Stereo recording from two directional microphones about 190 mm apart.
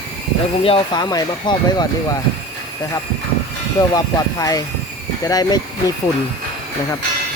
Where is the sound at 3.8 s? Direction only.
20° left (ahead or behind).